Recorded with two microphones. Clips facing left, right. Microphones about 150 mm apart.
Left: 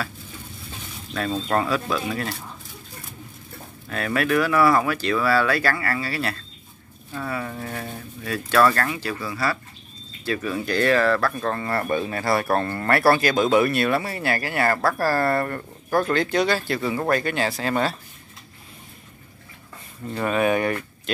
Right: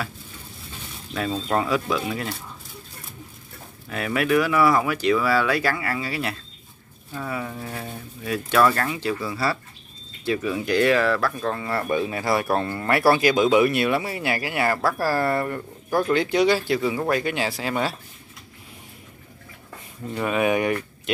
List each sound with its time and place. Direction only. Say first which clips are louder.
1.1 s speech: left 1 dB; 15° right (ahead or behind)
3.9 s speech: right 1 dB; 15° right (ahead or behind)
20.1 s speech: left 1 dB; 10° right (ahead or behind)